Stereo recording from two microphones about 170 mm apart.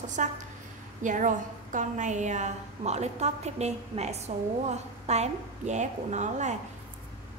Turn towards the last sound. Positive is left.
turn(degrees=-45)  # may be behind; listen again after turning